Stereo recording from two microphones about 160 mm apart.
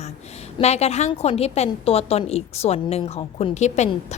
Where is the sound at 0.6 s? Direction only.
40° left (ahead or behind).